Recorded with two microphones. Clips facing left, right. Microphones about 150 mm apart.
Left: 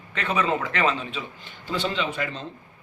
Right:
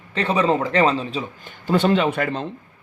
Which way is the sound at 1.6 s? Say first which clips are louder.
Right 9 dB; 55° right (ahead or behind).